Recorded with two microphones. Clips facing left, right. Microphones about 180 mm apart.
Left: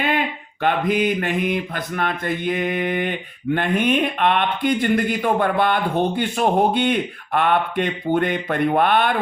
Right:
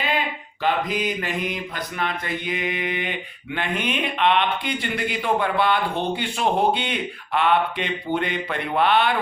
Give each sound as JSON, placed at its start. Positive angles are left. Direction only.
{"t": 0.6, "sound": "speech", "side_deg": 55}